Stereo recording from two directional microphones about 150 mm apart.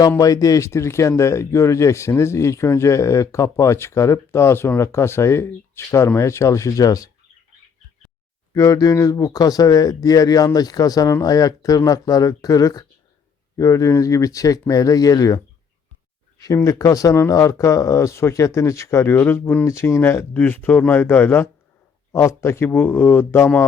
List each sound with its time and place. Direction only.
0.2 s speech: 25° left (ahead or behind)
8.5 s speech: 25° left (ahead or behind)
16.4 s speech: 20° left (ahead or behind)